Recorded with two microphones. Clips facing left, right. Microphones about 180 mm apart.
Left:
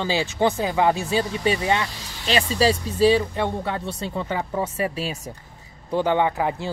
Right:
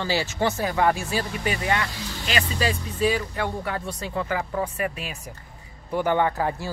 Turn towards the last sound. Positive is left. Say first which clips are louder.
# left 1 dB
turn(degrees=15)  # may be behind; listen again after turning